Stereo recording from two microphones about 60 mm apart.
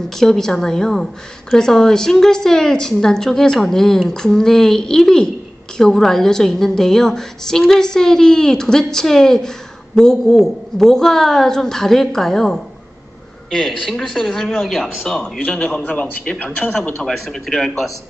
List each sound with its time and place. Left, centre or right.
0.2 s a woman's voice: centre
15.9 s a man's voice: left
17.0 s speech: centre